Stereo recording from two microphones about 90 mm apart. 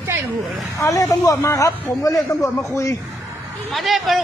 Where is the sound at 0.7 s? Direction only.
40° left (ahead or behind).